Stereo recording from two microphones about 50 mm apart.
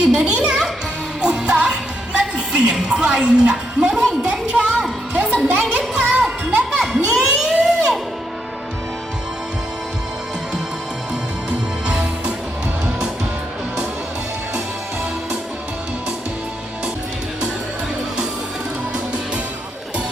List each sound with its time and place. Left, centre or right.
0.0 s music: centre
0.3 s music: right
6.9 s crowd: centre
11.9 s music: centre